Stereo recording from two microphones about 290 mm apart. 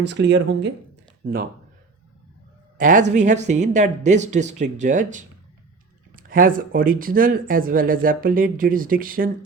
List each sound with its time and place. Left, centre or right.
0.0 s speech: right
2.7 s speech: right